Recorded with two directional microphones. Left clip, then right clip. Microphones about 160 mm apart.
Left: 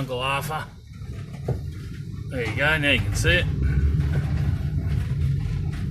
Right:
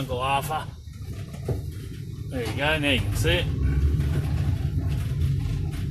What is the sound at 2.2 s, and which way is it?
Speech, centre (ahead or behind).